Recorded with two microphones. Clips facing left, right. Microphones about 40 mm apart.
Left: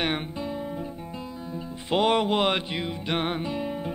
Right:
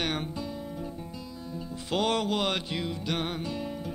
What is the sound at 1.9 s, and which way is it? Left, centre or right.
Music, left.